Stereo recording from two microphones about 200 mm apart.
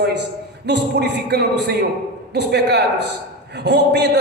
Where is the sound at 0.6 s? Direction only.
55° right (ahead or behind).